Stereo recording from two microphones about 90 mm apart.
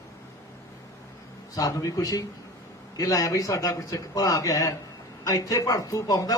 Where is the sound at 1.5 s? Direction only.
40° left (ahead or behind).